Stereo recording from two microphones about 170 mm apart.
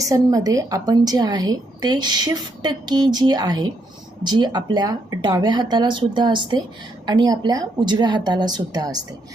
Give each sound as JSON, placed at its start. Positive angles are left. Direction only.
{"t": 0.0, "sound": "a woman's voice", "side_deg": -20}